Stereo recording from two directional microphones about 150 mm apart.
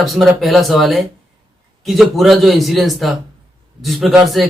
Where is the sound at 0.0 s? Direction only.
Centre (ahead or behind).